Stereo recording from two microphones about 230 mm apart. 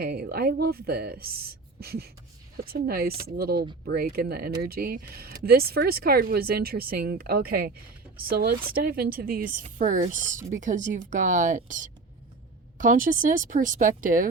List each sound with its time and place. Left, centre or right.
0.0 s speech: right